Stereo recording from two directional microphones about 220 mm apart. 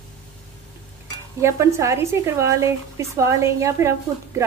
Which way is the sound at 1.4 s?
15° right (ahead or behind).